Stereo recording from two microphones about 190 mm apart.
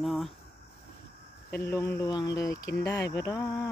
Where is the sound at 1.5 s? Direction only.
10° left (ahead or behind).